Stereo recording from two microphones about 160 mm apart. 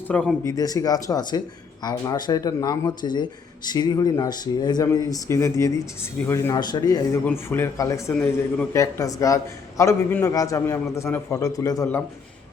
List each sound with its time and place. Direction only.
0.1 s speech: 5° left (ahead or behind)
0.4 s a man's voice: 25° left (ahead or behind)
7.3 s a man's voice: 15° left (ahead or behind)